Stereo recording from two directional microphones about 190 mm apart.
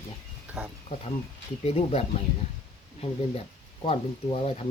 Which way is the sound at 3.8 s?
30° left (ahead or behind).